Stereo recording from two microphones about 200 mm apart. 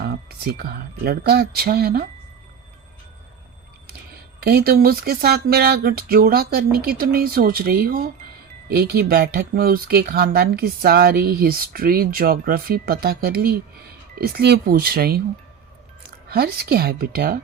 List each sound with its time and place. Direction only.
0.0 s speech: 50° right (ahead or behind)
3.8 s speech: 50° right (ahead or behind)
16.3 s speech: 50° right (ahead or behind)